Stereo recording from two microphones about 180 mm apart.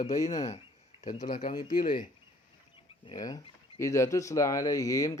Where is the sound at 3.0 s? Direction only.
20° left (ahead or behind).